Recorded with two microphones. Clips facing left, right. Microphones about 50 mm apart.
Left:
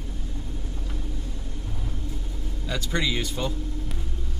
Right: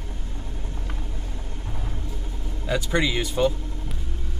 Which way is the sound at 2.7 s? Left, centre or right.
Centre.